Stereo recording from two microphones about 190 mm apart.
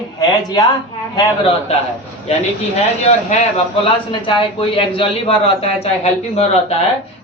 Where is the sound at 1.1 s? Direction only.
30° left (ahead or behind).